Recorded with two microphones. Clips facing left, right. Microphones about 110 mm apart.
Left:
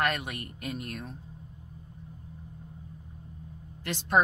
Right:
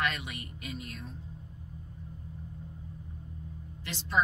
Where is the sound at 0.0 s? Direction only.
50° left (ahead or behind).